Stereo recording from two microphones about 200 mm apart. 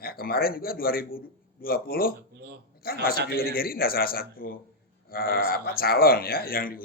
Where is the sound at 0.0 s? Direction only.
50° left (ahead or behind).